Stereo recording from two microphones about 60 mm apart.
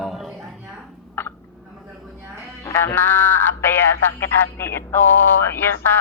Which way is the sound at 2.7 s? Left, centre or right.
Left.